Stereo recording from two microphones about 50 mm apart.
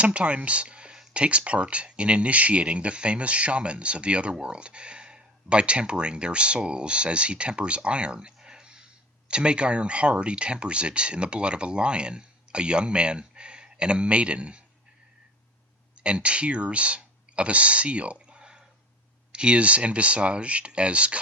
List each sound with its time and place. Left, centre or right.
0.0 s speech: right
8.4 s a sound: centre
9.3 s speech: centre
16.0 s speech: right